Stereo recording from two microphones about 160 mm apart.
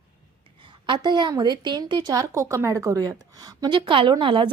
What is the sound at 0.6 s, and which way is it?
A woman's voice, 30° right (ahead or behind).